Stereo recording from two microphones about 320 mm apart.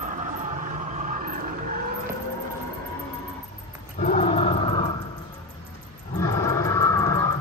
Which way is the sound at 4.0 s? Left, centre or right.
Centre.